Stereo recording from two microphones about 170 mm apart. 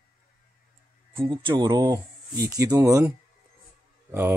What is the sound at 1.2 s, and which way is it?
Speech, 30° right (ahead or behind).